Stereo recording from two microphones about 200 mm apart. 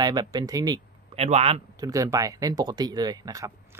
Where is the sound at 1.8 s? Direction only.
15° right (ahead or behind).